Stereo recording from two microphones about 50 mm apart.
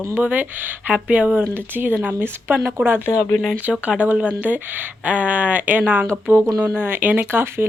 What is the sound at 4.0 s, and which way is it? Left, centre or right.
Speech, right.